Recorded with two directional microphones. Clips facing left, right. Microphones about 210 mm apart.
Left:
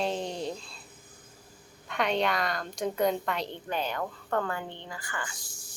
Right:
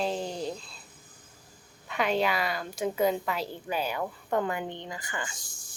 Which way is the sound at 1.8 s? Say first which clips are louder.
Right 1 dB; 5° right (ahead or behind).